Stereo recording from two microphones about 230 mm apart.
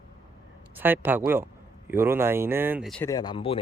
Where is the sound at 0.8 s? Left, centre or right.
Centre.